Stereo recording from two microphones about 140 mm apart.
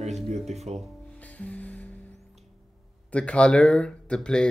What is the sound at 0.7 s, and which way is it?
Music, 50° right (ahead or behind).